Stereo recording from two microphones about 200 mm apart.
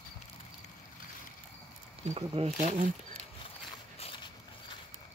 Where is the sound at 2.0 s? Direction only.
30° right (ahead or behind).